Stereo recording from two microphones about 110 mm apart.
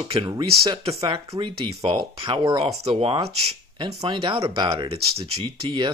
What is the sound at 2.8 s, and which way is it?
Speech, 60° right (ahead or behind).